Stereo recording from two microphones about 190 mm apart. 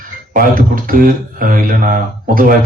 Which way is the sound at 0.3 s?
50° right (ahead or behind).